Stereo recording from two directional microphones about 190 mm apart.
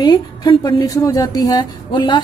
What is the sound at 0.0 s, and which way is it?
A woman's voice, 20° left (ahead or behind).